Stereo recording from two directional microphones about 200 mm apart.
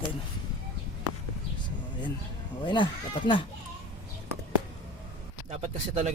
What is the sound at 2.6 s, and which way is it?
Speech, 25° left (ahead or behind).